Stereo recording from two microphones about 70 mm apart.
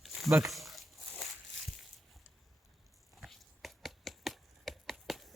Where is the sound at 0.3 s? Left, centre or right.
Right.